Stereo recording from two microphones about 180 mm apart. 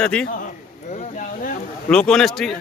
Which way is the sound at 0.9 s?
45° left (ahead or behind).